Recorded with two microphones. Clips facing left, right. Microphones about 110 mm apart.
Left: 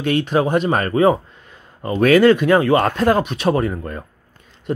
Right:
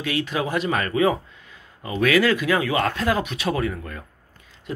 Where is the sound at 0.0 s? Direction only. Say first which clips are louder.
Left 7 dB; 45° left (ahead or behind).